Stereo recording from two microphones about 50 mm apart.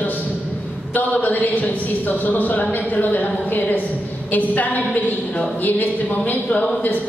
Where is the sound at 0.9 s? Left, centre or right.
Left.